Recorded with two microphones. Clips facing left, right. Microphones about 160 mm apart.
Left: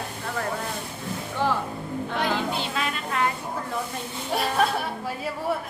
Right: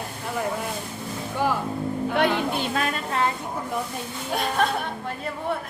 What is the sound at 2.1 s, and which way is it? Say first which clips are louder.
Music: right 3 dB; 60° right (ahead or behind).